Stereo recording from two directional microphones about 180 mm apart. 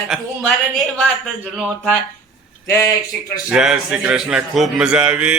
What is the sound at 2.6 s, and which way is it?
Speech, 15° left (ahead or behind).